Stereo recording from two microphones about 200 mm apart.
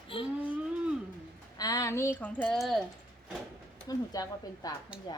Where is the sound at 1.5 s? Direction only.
20° left (ahead or behind); by 2.8 s centre (ahead or behind).